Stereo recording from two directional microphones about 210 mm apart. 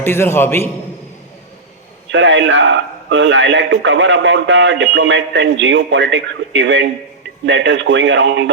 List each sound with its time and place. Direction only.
0.0 s a man's voice: 10° left (ahead or behind)
2.0 s a man's voice: 60° right (ahead or behind)